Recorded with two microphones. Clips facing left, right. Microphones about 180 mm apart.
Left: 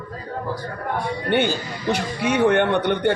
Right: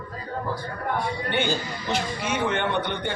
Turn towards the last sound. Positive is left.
turn(degrees=60)  # may be behind; listen again after turning